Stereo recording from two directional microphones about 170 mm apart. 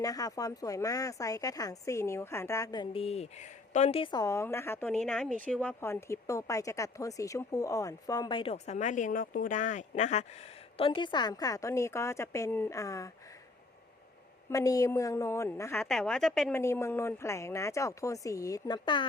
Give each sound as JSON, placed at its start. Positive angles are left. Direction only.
{"t": 0.0, "sound": "speech", "side_deg": 20}
{"t": 5.0, "sound": "speech", "side_deg": 0}
{"t": 10.8, "sound": "speech", "side_deg": 30}
{"t": 14.5, "sound": "a woman's voice", "side_deg": 20}
{"t": 15.8, "sound": "a woman's voice", "side_deg": 0}
{"t": 16.5, "sound": "a woman's voice", "side_deg": 15}